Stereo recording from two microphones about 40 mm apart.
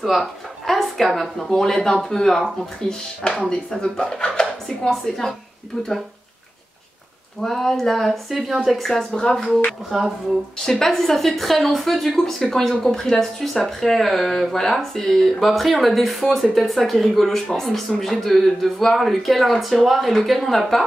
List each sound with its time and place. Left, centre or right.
0.0 s speech: centre
4.8 s speech: centre
7.4 s speech: centre
9.1 s speech: centre
9.8 s speech: centre
10.6 s speech: centre